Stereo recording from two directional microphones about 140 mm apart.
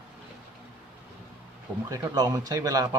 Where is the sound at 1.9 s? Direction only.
30° right (ahead or behind).